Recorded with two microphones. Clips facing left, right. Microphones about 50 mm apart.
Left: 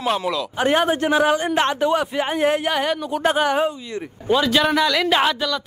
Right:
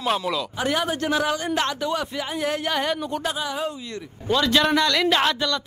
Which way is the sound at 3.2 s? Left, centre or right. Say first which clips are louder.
Left 9 dB; left.